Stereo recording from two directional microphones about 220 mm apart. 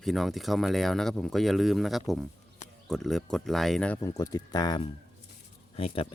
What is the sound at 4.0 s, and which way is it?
Speech, 15° left (ahead or behind).